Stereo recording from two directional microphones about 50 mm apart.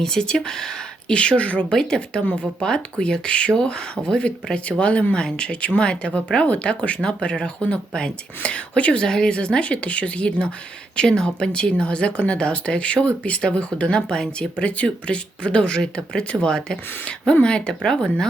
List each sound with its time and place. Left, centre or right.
0.0 s speech: centre